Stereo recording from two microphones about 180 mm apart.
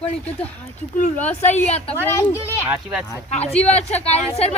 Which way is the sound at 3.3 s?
35° left (ahead or behind).